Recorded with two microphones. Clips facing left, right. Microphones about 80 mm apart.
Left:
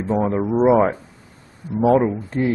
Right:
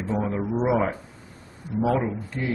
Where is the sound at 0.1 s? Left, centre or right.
Left.